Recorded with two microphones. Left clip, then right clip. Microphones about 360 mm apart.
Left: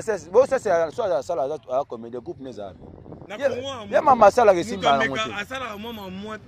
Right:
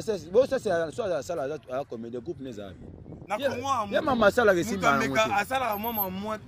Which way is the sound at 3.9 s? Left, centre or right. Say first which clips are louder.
Left 9 dB; centre.